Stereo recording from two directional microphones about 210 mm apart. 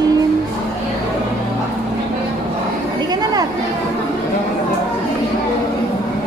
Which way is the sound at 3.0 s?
20° right (ahead or behind).